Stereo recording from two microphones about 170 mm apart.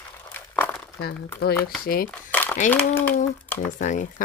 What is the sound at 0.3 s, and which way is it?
Crumpling, 10° left (ahead or behind).